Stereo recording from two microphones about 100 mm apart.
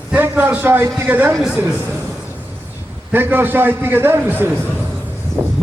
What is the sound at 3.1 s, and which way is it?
A man's voice, 20° right (ahead or behind).